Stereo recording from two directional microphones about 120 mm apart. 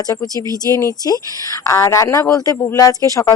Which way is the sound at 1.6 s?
25° left (ahead or behind).